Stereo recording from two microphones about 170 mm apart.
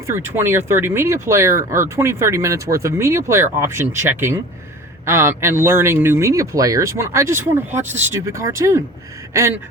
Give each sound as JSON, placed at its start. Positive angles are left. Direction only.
{"t": 0.1, "sound": "speech", "side_deg": -15}